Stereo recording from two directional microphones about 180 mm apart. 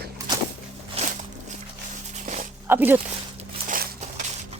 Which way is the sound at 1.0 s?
35° right (ahead or behind).